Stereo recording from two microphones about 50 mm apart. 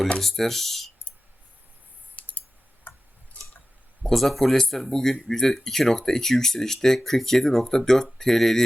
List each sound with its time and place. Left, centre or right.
0.2 s speech: centre
2.1 s clicking: left
2.9 s tick-tock: left
4.0 s speech: centre